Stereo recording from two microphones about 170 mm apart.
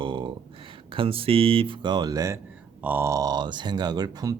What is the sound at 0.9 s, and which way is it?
Speech, 35° right (ahead or behind).